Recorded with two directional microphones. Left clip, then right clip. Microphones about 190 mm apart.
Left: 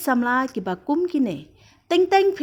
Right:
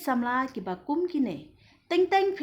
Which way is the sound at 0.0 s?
35° left (ahead or behind).